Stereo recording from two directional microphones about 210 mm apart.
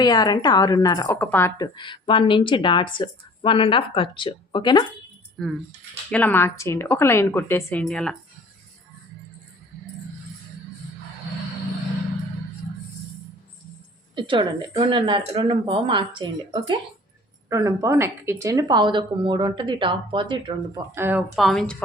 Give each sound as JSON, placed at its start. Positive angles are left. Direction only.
{"t": 0.0, "sound": "a woman's voice", "side_deg": 20}
{"t": 5.4, "sound": "speech", "side_deg": 0}
{"t": 14.2, "sound": "speech", "side_deg": -25}
{"t": 20.7, "sound": "speech", "side_deg": -10}